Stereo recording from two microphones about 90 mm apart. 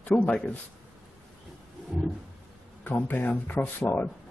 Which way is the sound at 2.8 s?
20° left (ahead or behind).